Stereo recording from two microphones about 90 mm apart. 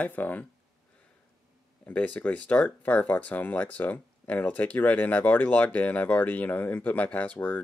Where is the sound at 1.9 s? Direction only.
15° left (ahead or behind).